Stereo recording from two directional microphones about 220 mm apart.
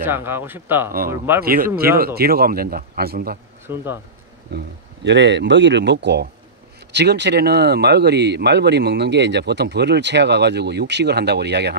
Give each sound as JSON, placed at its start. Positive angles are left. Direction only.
{"t": 0.0, "sound": "speech", "side_deg": -10}
{"t": 1.4, "sound": "speech", "side_deg": -40}
{"t": 3.6, "sound": "speech", "side_deg": -10}
{"t": 4.5, "sound": "speech", "side_deg": -50}